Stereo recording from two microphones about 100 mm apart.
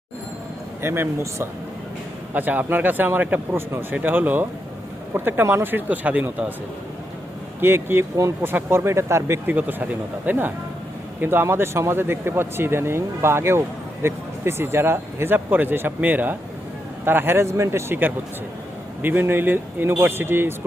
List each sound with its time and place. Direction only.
0.8 s speech: 25° right (ahead or behind)
7.6 s speech: 25° right (ahead or behind)